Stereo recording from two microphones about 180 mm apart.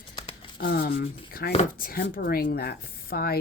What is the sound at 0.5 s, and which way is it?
Speech, 60° left (ahead or behind).